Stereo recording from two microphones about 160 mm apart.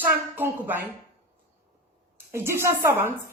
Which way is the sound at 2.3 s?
15° right (ahead or behind).